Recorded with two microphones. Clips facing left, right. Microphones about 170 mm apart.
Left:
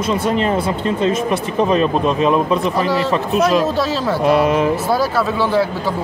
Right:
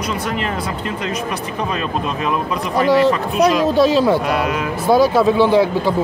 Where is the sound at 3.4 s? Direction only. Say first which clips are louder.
Right 3 dB; 15° right (ahead or behind).